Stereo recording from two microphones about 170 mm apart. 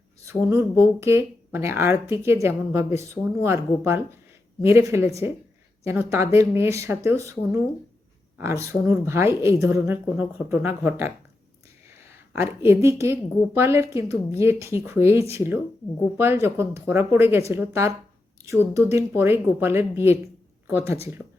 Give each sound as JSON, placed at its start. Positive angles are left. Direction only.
{"t": 0.3, "sound": "speech", "side_deg": -15}
{"t": 12.3, "sound": "speech", "side_deg": -15}